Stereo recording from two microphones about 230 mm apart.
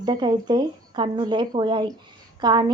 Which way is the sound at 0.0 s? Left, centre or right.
Centre.